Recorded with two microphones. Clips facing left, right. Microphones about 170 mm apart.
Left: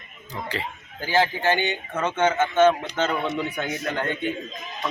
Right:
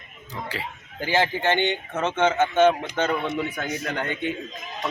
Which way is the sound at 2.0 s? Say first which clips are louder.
Even; 20° right (ahead or behind).